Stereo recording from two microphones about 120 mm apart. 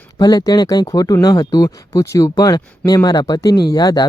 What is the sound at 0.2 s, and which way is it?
Speech, 35° left (ahead or behind).